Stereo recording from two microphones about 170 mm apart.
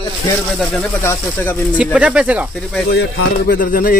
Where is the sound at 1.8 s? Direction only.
10° right (ahead or behind).